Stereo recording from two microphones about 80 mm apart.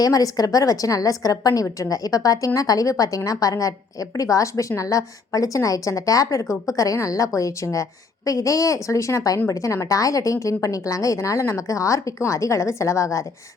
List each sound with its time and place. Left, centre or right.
0.0 s a woman's voice: left